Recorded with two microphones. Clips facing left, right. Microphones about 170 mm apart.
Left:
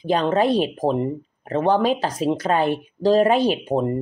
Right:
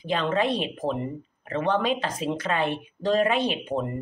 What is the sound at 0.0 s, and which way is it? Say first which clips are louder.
Speech: left 6 dB; 40° left (ahead or behind).